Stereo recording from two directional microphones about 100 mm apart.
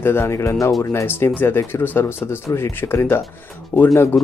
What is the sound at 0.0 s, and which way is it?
Speech, 25° left (ahead or behind).